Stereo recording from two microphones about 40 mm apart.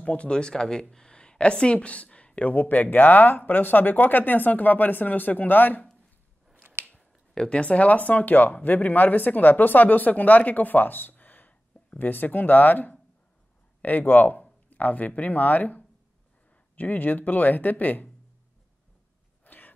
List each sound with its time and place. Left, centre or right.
0.0 s speech: left
7.3 s speech: left
19.4 s a sound: left